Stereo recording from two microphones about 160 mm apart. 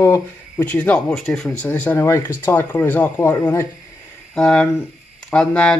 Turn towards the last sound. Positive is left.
turn(degrees=5)  # may be behind; listen again after turning